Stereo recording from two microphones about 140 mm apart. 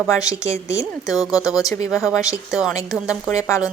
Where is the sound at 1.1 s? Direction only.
5° right (ahead or behind).